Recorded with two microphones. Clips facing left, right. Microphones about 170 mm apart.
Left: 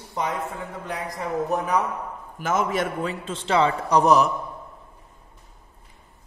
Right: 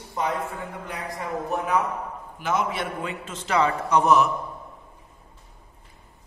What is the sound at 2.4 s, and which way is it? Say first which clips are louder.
A man's voice: left 2 dB; 45° left (ahead or behind).